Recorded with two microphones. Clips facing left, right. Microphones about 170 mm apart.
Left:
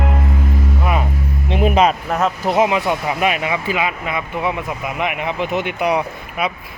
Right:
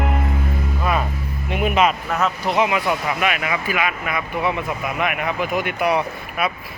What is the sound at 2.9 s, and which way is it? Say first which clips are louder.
Speech: left 3 dB; 30° left (ahead or behind).